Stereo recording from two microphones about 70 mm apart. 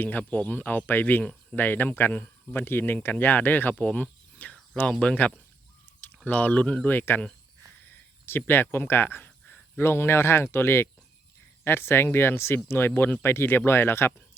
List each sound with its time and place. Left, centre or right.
0.0 s speech: left
1.2 s cricket: centre
1.5 s speech: left
3.8 s cricket: left
4.8 s speech: centre
6.9 s speech: left
7.9 s a sound: left
8.6 s speech: left